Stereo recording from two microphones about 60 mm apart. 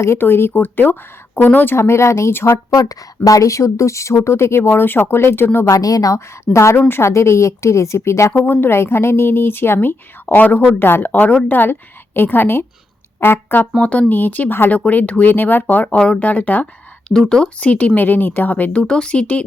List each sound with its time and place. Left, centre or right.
0.2 s speech: left
1.7 s a woman's voice: left
2.6 s a woman's voice: left
5.7 s a woman's voice: left
6.1 s a woman's voice: left
6.7 s speech: left
7.1 s a woman's voice: left
8.3 s speech: left
14.1 s speech: left
17.1 s speech: centre